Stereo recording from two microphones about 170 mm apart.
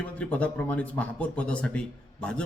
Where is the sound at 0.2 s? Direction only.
5° left (ahead or behind).